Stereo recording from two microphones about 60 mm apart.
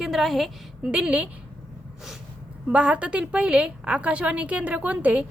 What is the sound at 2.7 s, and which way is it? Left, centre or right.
A woman's voice, right.